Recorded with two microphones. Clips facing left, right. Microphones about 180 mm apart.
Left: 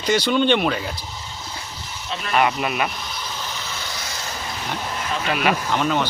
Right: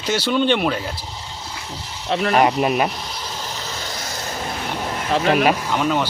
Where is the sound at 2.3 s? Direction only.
35° right (ahead or behind).